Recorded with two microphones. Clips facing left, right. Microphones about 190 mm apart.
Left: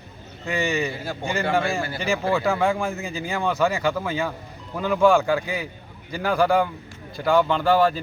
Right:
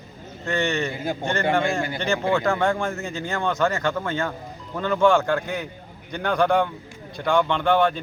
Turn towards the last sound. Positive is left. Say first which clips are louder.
# left 1 dB
turn(degrees=5)  # may be behind; listen again after turning